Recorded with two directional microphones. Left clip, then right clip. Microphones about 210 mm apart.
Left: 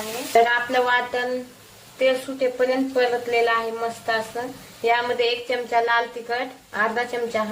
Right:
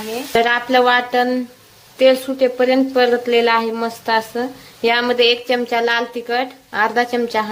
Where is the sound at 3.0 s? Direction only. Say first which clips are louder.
Right 5 dB; 55° right (ahead or behind).